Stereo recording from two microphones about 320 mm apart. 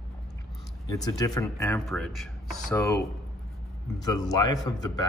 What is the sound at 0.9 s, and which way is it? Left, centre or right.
A man's voice, centre.